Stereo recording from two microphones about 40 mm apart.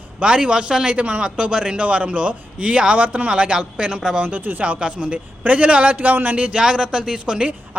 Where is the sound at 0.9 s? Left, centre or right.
Right.